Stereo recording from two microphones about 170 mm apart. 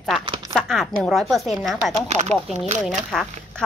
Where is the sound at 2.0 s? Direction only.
40° right (ahead or behind).